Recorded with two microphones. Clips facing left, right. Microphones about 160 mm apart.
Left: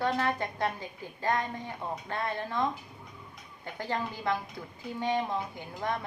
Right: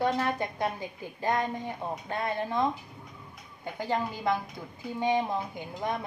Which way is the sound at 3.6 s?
15° right (ahead or behind).